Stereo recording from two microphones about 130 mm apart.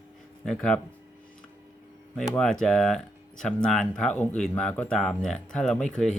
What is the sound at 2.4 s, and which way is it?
Speech, 5° left (ahead or behind).